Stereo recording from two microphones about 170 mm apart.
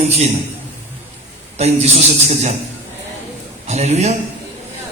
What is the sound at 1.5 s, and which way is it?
Speech, 40° right (ahead or behind).